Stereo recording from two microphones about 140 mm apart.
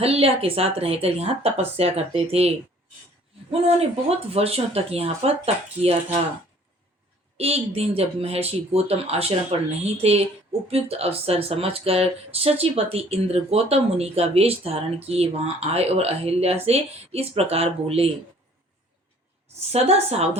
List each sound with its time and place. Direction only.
0.0 s speech: 45° right (ahead or behind)
4.3 s speech: 45° right (ahead or behind)
7.3 s speech: 45° right (ahead or behind)
19.7 s speech: 50° right (ahead or behind)